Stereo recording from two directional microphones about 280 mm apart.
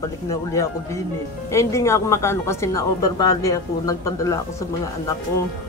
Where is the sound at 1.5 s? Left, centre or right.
Centre.